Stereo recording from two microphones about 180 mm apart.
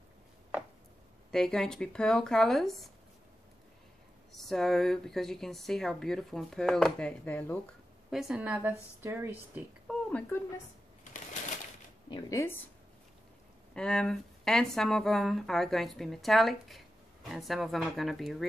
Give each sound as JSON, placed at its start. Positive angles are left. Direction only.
{"t": 1.3, "sound": "speech", "side_deg": 5}
{"t": 4.3, "sound": "speech", "side_deg": 0}
{"t": 8.1, "sound": "speech", "side_deg": -5}
{"t": 9.8, "sound": "a sound", "side_deg": 5}
{"t": 12.1, "sound": "speech", "side_deg": 15}
{"t": 13.7, "sound": "speech", "side_deg": 5}